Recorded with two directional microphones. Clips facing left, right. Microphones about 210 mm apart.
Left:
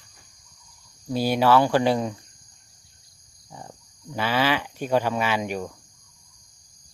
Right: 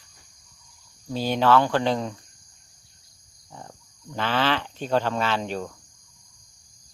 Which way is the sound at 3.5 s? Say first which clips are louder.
Left 1 dB; 10° left (ahead or behind).